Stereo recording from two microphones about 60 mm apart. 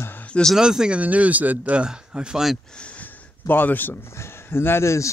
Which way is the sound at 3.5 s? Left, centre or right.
Left.